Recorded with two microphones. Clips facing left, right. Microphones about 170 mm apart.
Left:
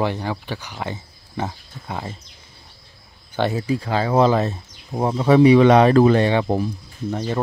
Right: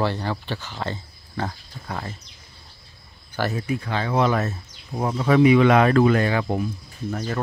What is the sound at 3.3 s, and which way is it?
Speech, 25° left (ahead or behind).